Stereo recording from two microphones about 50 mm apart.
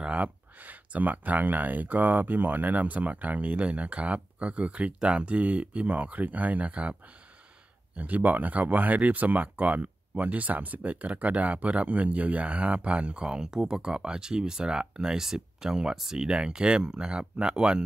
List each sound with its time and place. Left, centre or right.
0.0 s speech: right